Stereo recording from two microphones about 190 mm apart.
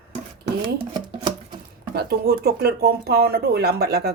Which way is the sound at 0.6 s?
25° right (ahead or behind).